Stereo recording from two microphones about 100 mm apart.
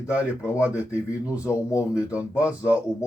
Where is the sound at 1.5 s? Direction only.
30° left (ahead or behind).